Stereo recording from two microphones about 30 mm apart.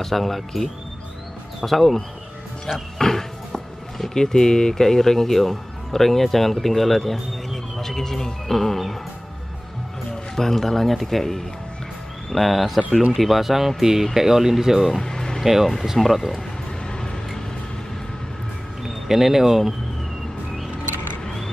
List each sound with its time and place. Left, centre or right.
0.0 s a man's voice: centre
10.3 s a man's voice: centre
15.0 s music: centre
15.4 s speech: centre
16.8 s a sound: left
19.0 s speech: centre